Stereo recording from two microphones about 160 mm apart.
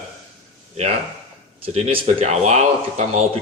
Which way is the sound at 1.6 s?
40° right (ahead or behind).